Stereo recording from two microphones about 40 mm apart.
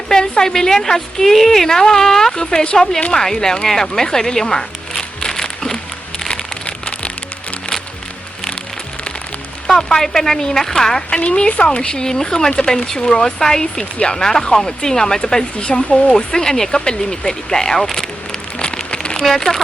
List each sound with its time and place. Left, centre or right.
0.1 s speech: centre
3.1 s a sound: centre
9.6 s speech: centre
11.2 s speech: left